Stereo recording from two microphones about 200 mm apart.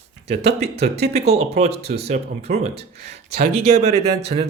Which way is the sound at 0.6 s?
30° right (ahead or behind).